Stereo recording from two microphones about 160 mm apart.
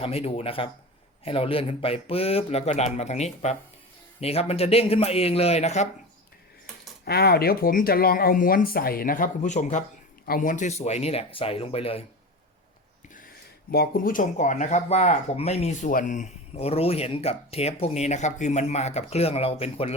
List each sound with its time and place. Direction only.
0.0 s speech: 40° left (ahead or behind)
7.0 s speech: 75° left (ahead or behind); by 9.8 s 45° left (ahead or behind)
10.2 s speech: 60° left (ahead or behind); by 12.0 s 35° left (ahead or behind)
13.7 s speech: 70° left (ahead or behind); by 19.9 s 40° left (ahead or behind)